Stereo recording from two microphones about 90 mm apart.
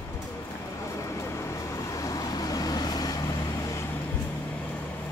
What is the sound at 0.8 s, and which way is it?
Vehicle, 35° left (ahead or behind).